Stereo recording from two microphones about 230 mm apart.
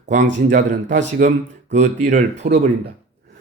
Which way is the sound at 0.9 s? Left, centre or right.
Right.